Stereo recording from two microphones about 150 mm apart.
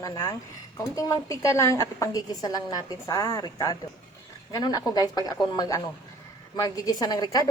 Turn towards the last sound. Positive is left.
turn(degrees=25)  # may be behind; listen again after turning